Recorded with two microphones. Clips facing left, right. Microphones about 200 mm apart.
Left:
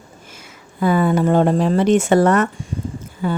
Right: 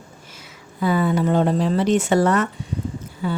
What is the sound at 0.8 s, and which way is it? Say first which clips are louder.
Speech: left 3 dB; 50° left (ahead or behind).